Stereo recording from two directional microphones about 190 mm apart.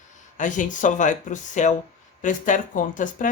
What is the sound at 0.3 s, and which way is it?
Speech, 40° left (ahead or behind).